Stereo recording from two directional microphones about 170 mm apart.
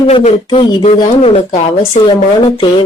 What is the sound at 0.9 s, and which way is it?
Speech, 40° left (ahead or behind).